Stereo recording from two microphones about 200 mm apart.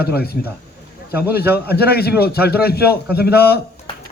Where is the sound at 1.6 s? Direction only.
50° left (ahead or behind).